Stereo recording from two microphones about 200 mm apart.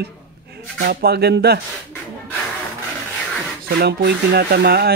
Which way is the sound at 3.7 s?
55° right (ahead or behind).